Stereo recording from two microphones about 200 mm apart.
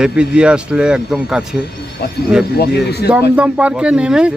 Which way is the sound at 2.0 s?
50° left (ahead or behind).